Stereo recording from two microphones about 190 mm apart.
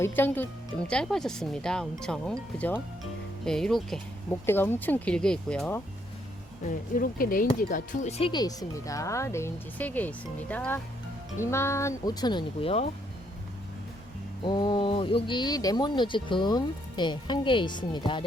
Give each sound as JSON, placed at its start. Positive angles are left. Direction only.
{"t": 0.0, "sound": "speech", "side_deg": 10}
{"t": 6.9, "sound": "speech", "side_deg": 50}
{"t": 7.7, "sound": "speech", "side_deg": 35}
{"t": 14.4, "sound": "speech", "side_deg": 25}